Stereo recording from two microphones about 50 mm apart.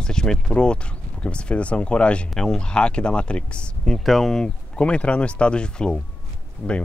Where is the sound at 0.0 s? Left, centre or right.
Centre.